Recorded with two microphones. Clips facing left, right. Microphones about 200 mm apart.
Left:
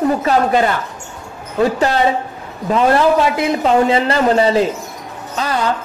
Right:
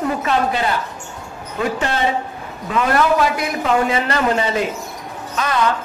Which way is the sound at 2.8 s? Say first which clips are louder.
Left 3 dB; 30° left (ahead or behind).